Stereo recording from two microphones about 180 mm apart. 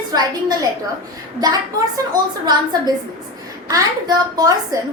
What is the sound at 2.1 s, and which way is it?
A woman's voice, 20° right (ahead or behind).